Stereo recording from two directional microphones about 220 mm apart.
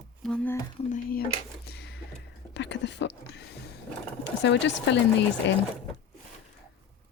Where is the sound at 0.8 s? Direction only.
40° left (ahead or behind).